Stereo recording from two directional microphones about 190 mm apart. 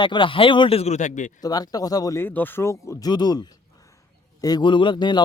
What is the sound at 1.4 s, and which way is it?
Speech, 20° left (ahead or behind).